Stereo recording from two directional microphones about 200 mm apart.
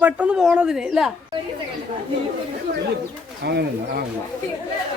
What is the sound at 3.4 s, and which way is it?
Speech, 55° right (ahead or behind).